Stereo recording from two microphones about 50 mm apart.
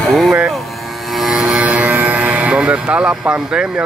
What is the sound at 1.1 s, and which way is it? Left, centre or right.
Vehicle, centre.